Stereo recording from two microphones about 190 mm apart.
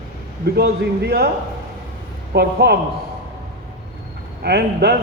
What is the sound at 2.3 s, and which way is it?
Speech, 55° right (ahead or behind).